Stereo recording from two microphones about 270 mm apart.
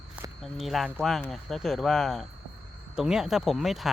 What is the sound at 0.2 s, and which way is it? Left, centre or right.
Speech, centre.